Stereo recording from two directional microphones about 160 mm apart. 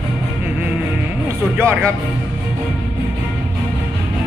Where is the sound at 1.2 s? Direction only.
15° right (ahead or behind).